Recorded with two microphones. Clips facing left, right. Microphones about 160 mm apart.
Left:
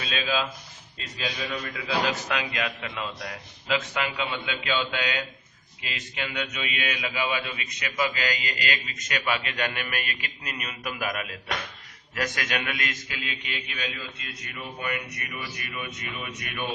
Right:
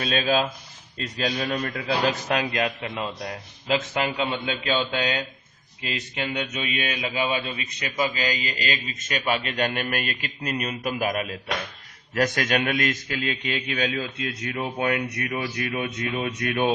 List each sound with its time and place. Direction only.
0.0 s a man's voice: 50° right (ahead or behind)
13.5 s speech: 60° right (ahead or behind)